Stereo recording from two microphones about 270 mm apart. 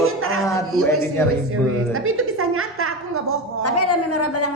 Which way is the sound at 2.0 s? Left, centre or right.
Right.